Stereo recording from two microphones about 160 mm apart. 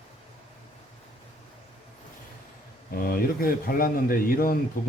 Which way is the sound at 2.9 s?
65° left (ahead or behind).